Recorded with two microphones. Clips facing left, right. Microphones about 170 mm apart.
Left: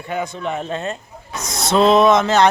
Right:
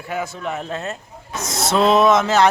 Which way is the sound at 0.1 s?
5° right (ahead or behind).